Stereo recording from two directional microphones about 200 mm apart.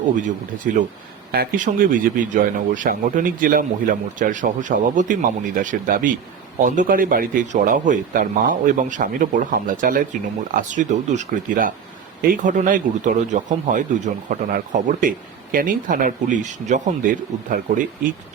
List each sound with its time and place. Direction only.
0.7 s speech: 50° right (ahead or behind)